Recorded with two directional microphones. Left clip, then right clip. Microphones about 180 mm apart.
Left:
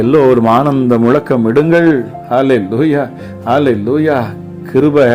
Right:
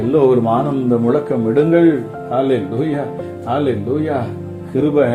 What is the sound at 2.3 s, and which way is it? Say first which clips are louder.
Speech: left 6 dB; 35° left (ahead or behind).